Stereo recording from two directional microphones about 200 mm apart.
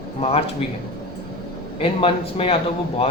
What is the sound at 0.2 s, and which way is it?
Speech, 30° left (ahead or behind).